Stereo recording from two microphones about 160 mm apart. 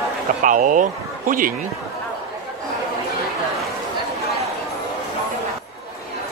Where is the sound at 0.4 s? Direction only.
55° right (ahead or behind).